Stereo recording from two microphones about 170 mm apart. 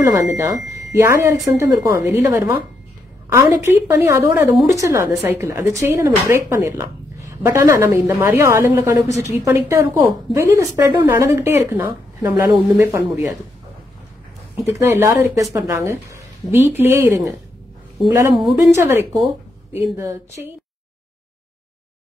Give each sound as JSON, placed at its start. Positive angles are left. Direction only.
{"t": 0.0, "sound": "a woman's voice", "side_deg": -15}
{"t": 14.8, "sound": "a woman's voice", "side_deg": -15}
{"t": 18.6, "sound": "a woman's voice", "side_deg": -15}